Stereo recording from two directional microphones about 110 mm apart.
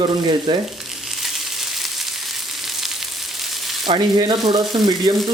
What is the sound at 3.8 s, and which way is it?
Speech, 40° right (ahead or behind).